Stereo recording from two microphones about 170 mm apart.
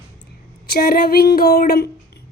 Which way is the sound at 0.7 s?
65° left (ahead or behind).